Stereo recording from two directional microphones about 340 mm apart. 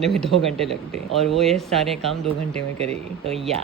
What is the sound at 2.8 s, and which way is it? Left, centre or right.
Speech, centre.